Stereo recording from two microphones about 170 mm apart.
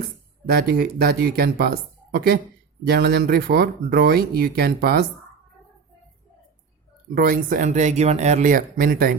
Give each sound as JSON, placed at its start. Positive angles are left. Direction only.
{"t": 0.4, "sound": "speech", "side_deg": -65}
{"t": 7.1, "sound": "speech", "side_deg": -55}